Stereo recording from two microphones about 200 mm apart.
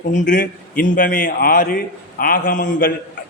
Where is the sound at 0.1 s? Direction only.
40° left (ahead or behind).